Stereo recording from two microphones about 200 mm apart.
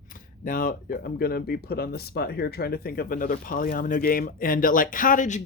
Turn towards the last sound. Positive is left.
turn(degrees=40)  # may be behind; listen again after turning